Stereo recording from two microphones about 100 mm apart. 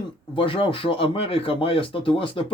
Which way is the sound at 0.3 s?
60° left (ahead or behind).